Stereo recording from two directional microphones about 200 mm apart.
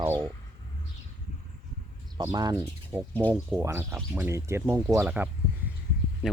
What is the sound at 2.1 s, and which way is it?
Speech, 20° right (ahead or behind).